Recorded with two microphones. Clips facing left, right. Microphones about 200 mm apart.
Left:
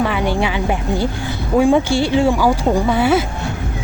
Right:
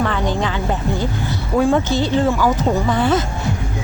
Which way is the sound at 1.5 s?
15° left (ahead or behind).